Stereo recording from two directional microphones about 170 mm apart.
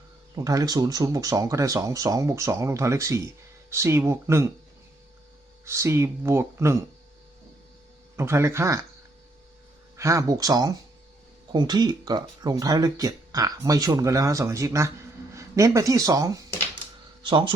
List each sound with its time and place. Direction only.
0.3 s speech: 20° right (ahead or behind)
5.6 s speech: 15° right (ahead or behind)
8.1 s speech: 15° right (ahead or behind)
10.0 s speech: 20° right (ahead or behind)